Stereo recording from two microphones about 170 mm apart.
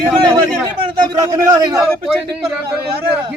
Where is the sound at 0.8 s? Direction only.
20° right (ahead or behind).